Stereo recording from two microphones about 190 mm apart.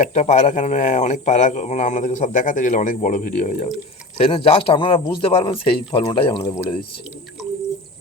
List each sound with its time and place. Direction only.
0.0 s speech: 35° left (ahead or behind)